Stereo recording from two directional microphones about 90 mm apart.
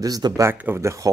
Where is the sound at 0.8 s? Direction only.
35° right (ahead or behind).